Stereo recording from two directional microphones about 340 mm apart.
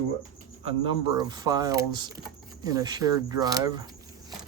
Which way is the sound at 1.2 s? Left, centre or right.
Centre.